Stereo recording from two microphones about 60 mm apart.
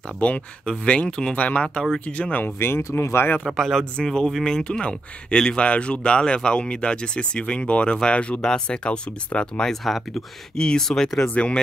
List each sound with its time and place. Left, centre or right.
0.2 s speech: left
2.4 s speech: left
2.8 s speech: left
3.4 s speech: centre
9.7 s speech: centre
11.2 s speech: left